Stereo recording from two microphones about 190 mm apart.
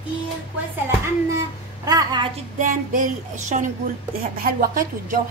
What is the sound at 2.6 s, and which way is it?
A woman's voice, 45° right (ahead or behind).